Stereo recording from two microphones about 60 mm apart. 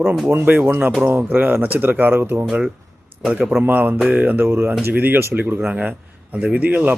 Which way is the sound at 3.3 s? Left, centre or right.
Right.